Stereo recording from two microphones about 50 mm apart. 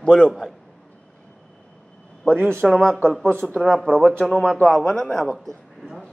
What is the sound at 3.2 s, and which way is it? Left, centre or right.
A man's voice, left.